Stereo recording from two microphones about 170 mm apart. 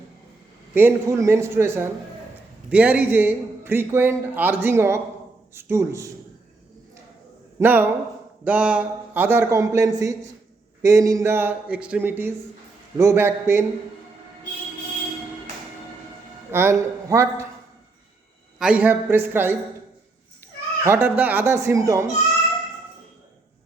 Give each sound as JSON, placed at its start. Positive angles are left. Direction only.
{"t": 0.7, "sound": "a man's voice", "side_deg": -15}
{"t": 7.6, "sound": "a man's voice", "side_deg": -10}
{"t": 16.5, "sound": "a man's voice", "side_deg": -15}
{"t": 18.6, "sound": "a man's voice", "side_deg": -5}
{"t": 20.8, "sound": "a man's voice", "side_deg": -15}